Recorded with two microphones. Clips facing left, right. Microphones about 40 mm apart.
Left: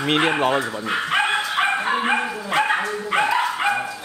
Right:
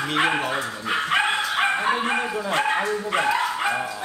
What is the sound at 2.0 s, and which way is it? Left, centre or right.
Dog, centre.